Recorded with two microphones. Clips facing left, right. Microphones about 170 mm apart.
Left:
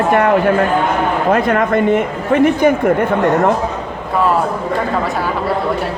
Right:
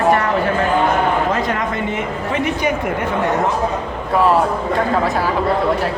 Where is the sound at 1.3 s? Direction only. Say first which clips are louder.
Left 6 dB; 55° left (ahead or behind).